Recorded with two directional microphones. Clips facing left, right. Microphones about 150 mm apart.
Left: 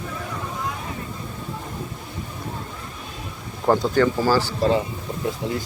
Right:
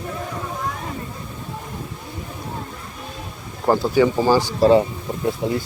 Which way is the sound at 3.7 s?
10° right (ahead or behind).